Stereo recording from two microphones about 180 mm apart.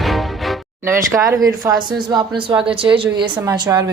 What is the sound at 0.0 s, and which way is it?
Music, centre (ahead or behind).